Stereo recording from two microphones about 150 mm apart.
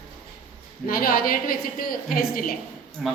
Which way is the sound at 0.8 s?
75° left (ahead or behind).